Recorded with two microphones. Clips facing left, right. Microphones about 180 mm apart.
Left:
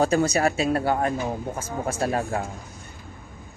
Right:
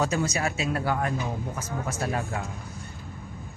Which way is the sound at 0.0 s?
55° left (ahead or behind).